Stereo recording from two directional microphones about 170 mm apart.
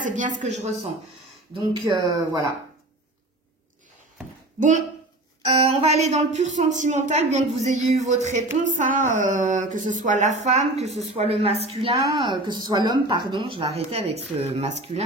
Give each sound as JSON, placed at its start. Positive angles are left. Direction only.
{"t": 0.0, "sound": "speech", "side_deg": -50}
{"t": 1.5, "sound": "speech", "side_deg": -25}
{"t": 4.6, "sound": "speech", "side_deg": -45}
{"t": 5.4, "sound": "speech", "side_deg": -30}
{"t": 12.0, "sound": "speech", "side_deg": -25}